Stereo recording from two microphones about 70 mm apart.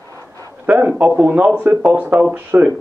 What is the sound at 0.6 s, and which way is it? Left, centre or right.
A man's voice, right.